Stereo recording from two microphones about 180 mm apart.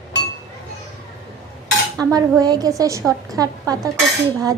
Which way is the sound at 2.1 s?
20° right (ahead or behind).